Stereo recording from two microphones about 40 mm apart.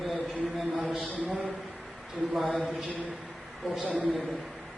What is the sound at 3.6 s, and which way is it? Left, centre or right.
Speech, centre.